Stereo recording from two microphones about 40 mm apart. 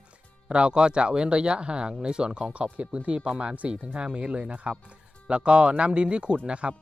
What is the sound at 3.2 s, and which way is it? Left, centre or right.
Speech, right.